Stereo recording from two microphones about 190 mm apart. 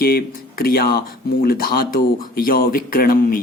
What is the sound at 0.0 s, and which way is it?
Speech, 55° left (ahead or behind).